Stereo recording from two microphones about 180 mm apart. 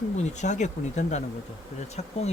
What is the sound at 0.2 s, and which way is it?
Speech, 40° left (ahead or behind).